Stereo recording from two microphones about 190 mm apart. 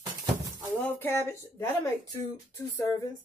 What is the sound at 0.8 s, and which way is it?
Speech, 10° left (ahead or behind).